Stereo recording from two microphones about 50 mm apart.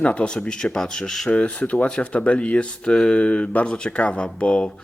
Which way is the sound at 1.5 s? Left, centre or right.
Left.